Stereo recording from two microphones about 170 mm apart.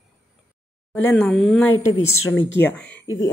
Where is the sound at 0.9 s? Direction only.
5° left (ahead or behind).